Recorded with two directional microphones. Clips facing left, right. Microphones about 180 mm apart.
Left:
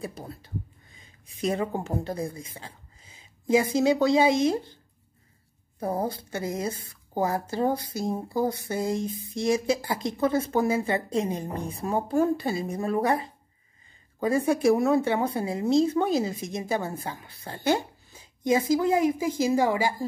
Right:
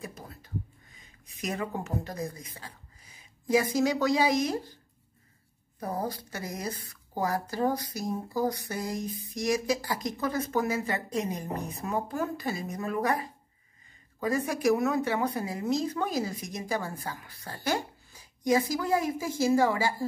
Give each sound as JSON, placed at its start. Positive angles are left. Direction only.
{"t": 0.0, "sound": "a woman's voice", "side_deg": 30}
{"t": 5.8, "sound": "a woman's voice", "side_deg": 25}